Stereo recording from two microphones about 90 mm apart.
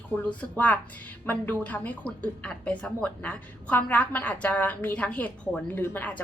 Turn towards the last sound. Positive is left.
turn(degrees=25)  # may be behind; listen again after turning